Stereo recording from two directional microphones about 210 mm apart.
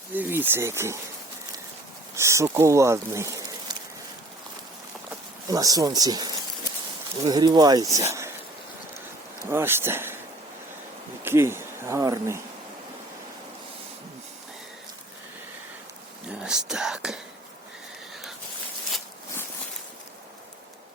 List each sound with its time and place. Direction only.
0.1 s speech: 10° right (ahead or behind)
2.1 s speech: 15° right (ahead or behind)
5.5 s speech: 15° right (ahead or behind)
9.5 s speech: 10° right (ahead or behind)
11.2 s speech: 10° right (ahead or behind)
16.3 s speech: 5° right (ahead or behind)
18.1 s a sound: centre (ahead or behind)